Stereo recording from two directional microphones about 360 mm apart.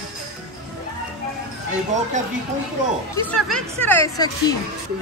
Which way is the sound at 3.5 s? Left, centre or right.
Centre.